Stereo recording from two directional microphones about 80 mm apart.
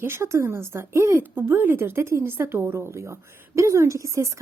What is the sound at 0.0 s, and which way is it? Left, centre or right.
A woman's voice, right.